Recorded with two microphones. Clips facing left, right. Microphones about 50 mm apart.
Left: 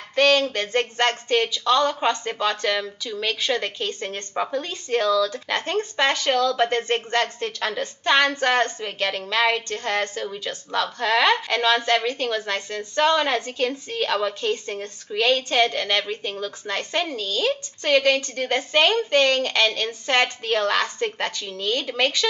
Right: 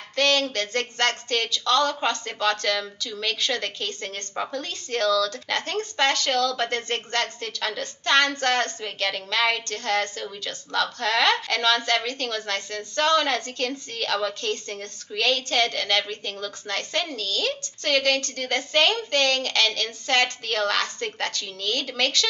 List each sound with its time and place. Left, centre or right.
0.1 s a woman's voice: centre